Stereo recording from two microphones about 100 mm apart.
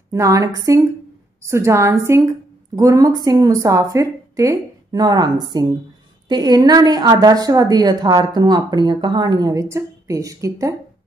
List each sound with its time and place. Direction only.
0.1 s a woman's voice: 35° right (ahead or behind)